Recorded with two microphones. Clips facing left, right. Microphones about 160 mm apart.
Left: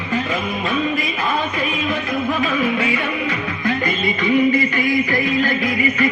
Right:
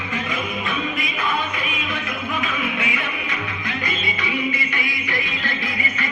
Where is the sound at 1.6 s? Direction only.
45° left (ahead or behind).